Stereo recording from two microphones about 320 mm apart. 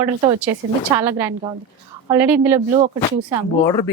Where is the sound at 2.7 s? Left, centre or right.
Right.